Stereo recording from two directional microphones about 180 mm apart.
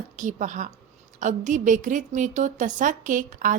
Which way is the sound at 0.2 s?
45° right (ahead or behind).